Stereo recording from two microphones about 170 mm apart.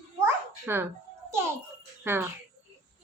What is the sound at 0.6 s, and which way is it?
A child's voice, 10° right (ahead or behind).